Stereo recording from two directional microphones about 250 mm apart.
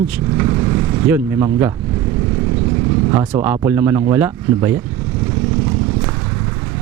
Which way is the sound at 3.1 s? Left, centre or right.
Centre.